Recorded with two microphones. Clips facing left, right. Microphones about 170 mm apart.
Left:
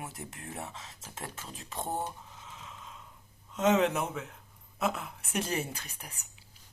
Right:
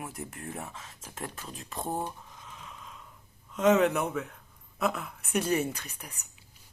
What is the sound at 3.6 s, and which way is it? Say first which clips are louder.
A woman's voice: right 3 dB; 25° left (ahead or behind).